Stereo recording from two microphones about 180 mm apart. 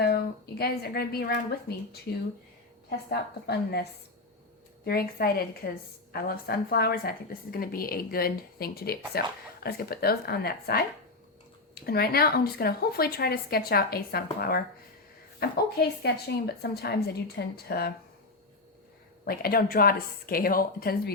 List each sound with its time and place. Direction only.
0.6 s a woman's voice: 60° left (ahead or behind)
3.1 s a woman's voice: 65° left (ahead or behind)
4.9 s a woman's voice: 55° left (ahead or behind)
19.2 s a woman's voice: 55° left (ahead or behind)